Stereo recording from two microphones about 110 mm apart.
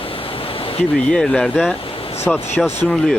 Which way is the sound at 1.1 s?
5° left (ahead or behind).